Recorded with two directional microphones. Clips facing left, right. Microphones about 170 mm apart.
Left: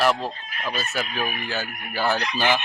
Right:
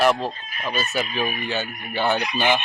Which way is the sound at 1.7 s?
65° left (ahead or behind).